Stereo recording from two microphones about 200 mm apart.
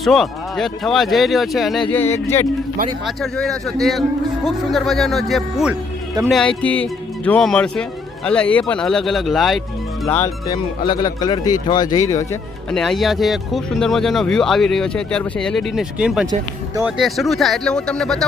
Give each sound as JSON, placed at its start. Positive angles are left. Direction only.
{"t": 0.0, "sound": "speech", "side_deg": 0}
{"t": 1.9, "sound": "speech", "side_deg": 10}
{"t": 10.1, "sound": "speech", "side_deg": 15}
{"t": 12.7, "sound": "speech", "side_deg": 0}